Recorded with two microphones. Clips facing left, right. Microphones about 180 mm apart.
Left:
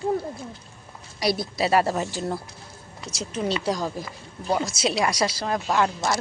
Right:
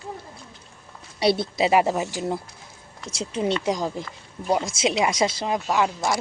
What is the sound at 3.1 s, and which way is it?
Speech, 25° right (ahead or behind).